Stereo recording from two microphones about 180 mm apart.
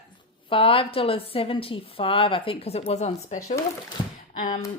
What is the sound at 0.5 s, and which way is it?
A woman's voice, 30° left (ahead or behind).